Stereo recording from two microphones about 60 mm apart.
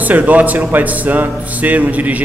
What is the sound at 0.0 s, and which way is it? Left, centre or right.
Speech, right.